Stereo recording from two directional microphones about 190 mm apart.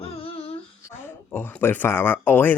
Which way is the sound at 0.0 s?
30° left (ahead or behind).